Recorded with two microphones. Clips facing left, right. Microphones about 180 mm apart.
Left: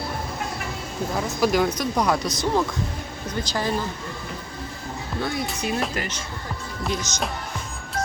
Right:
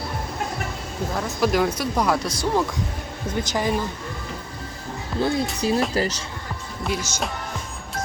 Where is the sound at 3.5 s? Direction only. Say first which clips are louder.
Right 2 dB; 15° right (ahead or behind).